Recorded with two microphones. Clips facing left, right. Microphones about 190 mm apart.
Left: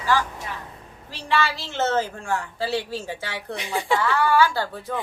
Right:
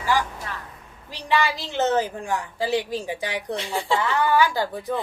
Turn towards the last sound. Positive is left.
turn(degrees=-15)  # may be behind; listen again after turning